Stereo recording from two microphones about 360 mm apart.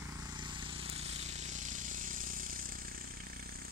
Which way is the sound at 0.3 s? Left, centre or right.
Centre.